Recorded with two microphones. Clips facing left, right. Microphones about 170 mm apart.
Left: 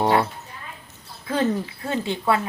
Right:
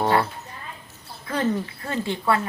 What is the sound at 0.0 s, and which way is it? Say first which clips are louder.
Speech: left 1 dB; 15° left (ahead or behind).